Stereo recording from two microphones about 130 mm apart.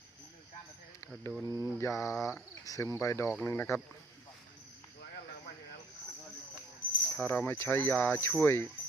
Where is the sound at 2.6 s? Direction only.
25° left (ahead or behind).